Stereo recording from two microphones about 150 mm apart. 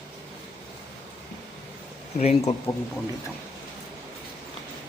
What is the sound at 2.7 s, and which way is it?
Speech, 20° left (ahead or behind).